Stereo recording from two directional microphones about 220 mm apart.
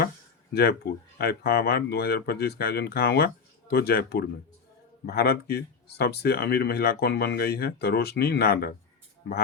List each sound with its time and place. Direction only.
0.5 s speech: 45° left (ahead or behind)